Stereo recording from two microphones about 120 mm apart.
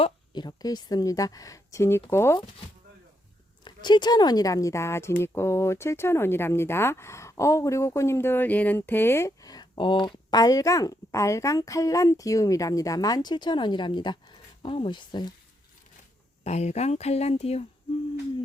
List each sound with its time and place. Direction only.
0.3 s speech: 35° left (ahead or behind)
3.6 s speech: 40° left (ahead or behind)
16.4 s speech: 65° left (ahead or behind)